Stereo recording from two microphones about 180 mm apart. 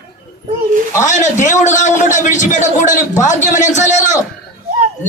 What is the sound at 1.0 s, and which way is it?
A man's voice, 40° left (ahead or behind).